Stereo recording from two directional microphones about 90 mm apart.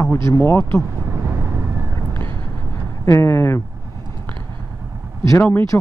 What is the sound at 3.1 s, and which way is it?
Speech, 30° left (ahead or behind).